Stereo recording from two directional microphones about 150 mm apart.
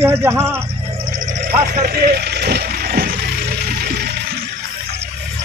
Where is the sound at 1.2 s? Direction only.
60° right (ahead or behind); by 4.2 s 90° right.